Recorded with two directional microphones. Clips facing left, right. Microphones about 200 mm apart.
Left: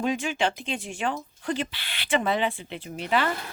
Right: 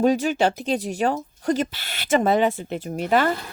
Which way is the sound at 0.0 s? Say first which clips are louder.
Right 7 dB; 40° right (ahead or behind).